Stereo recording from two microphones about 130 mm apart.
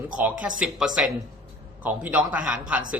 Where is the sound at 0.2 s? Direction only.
10° right (ahead or behind).